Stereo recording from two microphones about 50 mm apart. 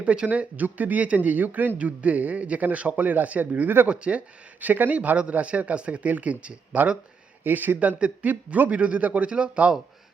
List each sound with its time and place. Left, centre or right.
0.0 s speech: right
4.6 s speech: right
7.4 s speech: right